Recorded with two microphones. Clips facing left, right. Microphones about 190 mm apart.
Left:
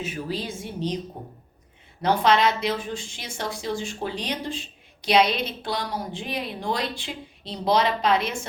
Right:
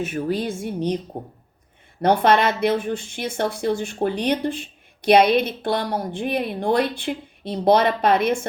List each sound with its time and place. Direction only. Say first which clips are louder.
0.0 s a woman's voice: right 6 dB; 55° right (ahead or behind)